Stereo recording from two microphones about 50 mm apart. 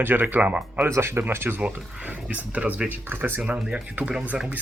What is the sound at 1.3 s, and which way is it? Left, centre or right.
Speech, right.